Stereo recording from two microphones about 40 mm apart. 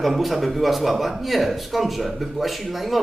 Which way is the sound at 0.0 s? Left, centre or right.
Centre.